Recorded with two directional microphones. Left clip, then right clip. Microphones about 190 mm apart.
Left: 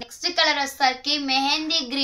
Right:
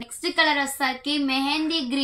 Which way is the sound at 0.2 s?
50° left (ahead or behind).